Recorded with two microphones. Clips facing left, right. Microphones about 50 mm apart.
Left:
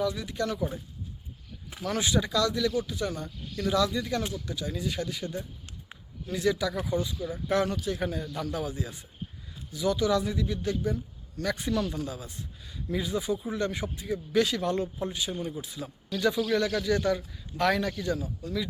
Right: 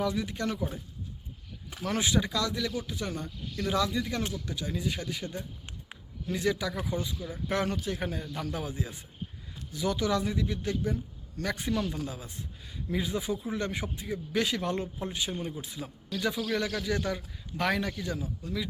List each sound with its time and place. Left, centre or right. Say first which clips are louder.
0.0 s a man's voice: left 1 dB; right
1.8 s speech: left 1 dB; right
4.2 s speech: even; centre
4.4 s a man's voice: even; right
7.2 s speech: left 5 dB; left
7.5 s a man's voice: left 3 dB; right
11.7 s speech: left 2 dB; right
16.5 s speech: left 4 dB; centre